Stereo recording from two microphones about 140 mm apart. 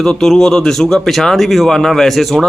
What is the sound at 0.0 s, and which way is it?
Speech, 5° left (ahead or behind).